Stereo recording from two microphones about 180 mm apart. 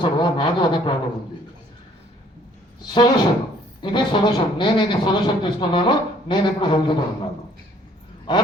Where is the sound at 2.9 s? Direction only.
25° left (ahead or behind).